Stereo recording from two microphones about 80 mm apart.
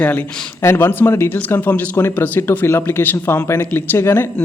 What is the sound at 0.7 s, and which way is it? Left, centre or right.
Speech, left.